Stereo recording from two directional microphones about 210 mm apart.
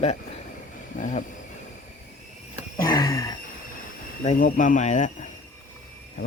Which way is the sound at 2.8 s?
20° left (ahead or behind).